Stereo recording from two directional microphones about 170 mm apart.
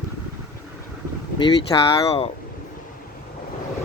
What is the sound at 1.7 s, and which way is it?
Speech, 20° left (ahead or behind).